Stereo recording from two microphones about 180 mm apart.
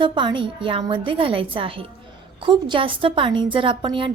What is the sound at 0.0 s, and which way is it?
A woman's voice, 25° right (ahead or behind).